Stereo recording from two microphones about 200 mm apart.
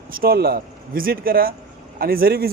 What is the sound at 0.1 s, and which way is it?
Speech, 50° right (ahead or behind).